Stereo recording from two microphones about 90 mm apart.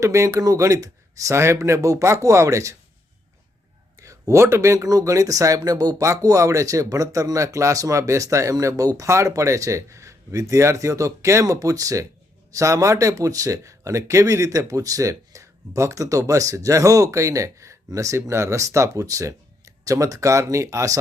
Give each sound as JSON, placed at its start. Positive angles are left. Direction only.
{"t": 0.0, "sound": "speech", "side_deg": -35}
{"t": 3.9, "sound": "speech", "side_deg": -35}